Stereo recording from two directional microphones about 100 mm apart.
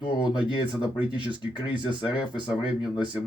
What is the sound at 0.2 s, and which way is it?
Speech, 55° left (ahead or behind).